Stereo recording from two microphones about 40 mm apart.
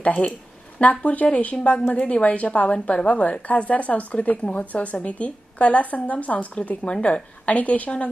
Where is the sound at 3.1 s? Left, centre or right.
Left.